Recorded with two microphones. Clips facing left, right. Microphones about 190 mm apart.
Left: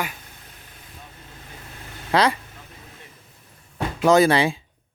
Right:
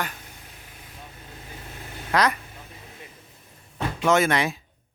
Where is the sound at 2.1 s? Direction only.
30° left (ahead or behind).